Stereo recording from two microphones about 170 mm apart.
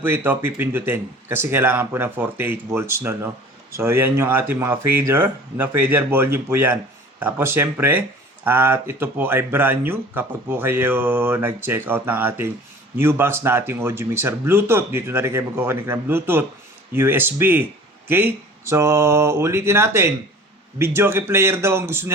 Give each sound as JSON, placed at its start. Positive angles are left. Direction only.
{"t": 0.0, "sound": "speech", "side_deg": -10}